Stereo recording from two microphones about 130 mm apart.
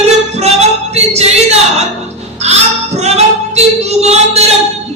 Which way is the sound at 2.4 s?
55° right (ahead or behind).